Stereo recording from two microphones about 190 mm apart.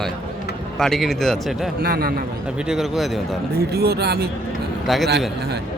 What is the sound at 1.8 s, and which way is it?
Speech, 50° right (ahead or behind).